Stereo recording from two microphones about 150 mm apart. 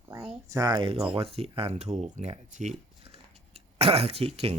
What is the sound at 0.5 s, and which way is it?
Speech, 25° right (ahead or behind).